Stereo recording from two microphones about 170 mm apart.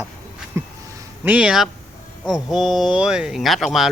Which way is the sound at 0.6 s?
15° right (ahead or behind).